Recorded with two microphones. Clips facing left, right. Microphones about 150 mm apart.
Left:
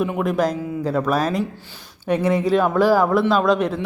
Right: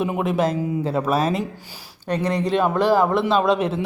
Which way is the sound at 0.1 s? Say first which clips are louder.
Left 1 dB; 5° right (ahead or behind).